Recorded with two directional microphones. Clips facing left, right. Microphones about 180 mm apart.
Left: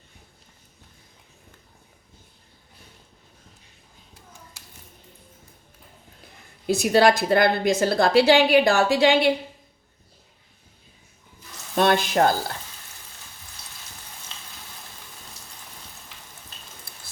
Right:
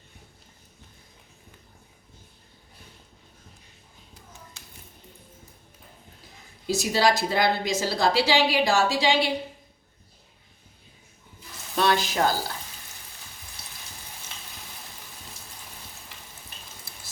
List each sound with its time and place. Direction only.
6.7 s a woman's voice: 55° left (ahead or behind)
11.8 s speech: 55° left (ahead or behind)
16.9 s raindrop: 55° left (ahead or behind)